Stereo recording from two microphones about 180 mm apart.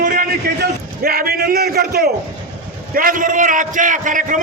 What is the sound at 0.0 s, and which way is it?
A man's voice, 55° right (ahead or behind).